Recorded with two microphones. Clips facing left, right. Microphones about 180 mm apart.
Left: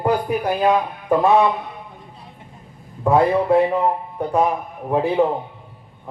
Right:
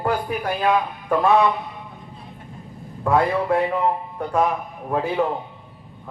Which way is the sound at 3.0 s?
20° left (ahead or behind).